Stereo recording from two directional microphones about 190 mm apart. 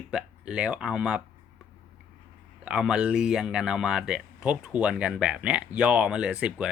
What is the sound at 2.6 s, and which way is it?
Speech, 5° right (ahead or behind).